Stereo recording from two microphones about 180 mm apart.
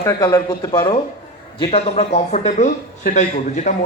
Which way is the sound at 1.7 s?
35° left (ahead or behind).